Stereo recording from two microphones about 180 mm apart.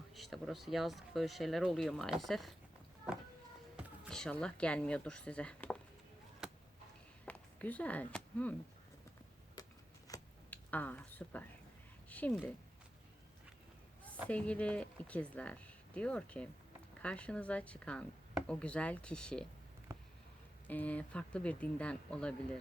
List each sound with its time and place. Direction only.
0.1 s speech: centre (ahead or behind)
3.8 s speech: 5° left (ahead or behind)
7.3 s a sound: 10° left (ahead or behind)
9.6 s a sound: 20° left (ahead or behind)
10.5 s speech: 10° left (ahead or behind)
14.3 s speech: 5° left (ahead or behind)
20.7 s speech: 10° left (ahead or behind)